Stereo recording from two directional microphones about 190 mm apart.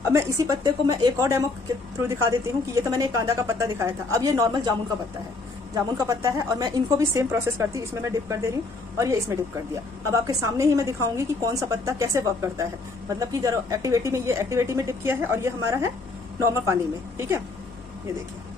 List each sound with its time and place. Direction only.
0.0 s a woman's voice: 15° right (ahead or behind)
5.9 s a woman's voice: 15° right (ahead or behind)